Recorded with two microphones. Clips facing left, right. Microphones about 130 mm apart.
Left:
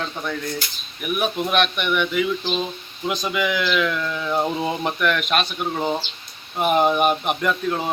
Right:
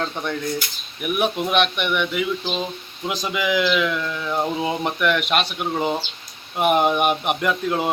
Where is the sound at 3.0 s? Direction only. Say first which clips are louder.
Even; 10° right (ahead or behind).